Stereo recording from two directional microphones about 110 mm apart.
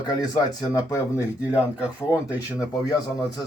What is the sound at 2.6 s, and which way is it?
Speech, 35° left (ahead or behind).